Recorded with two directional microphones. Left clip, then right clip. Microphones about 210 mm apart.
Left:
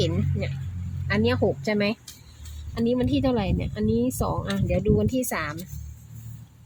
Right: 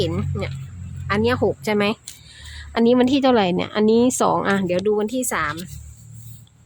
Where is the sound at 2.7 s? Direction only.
35° right (ahead or behind); by 5.5 s 15° right (ahead or behind).